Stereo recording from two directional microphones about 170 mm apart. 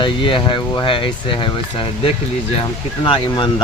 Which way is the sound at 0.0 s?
30° left (ahead or behind).